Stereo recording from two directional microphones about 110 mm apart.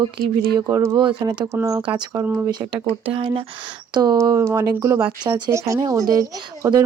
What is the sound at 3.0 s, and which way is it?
Speech, 55° right (ahead or behind).